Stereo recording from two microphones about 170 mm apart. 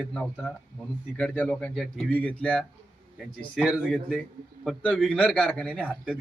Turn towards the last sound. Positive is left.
turn(degrees=-5)  # may be behind; listen again after turning